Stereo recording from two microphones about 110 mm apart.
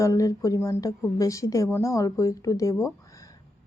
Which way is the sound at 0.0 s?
30° left (ahead or behind).